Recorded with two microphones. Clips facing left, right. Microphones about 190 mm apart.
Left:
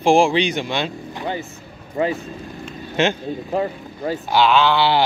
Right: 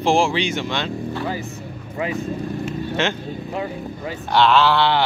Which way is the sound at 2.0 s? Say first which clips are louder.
Left 5 dB; 35° left (ahead or behind).